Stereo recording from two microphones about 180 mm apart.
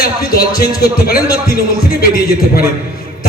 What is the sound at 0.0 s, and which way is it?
Speech, 55° left (ahead or behind).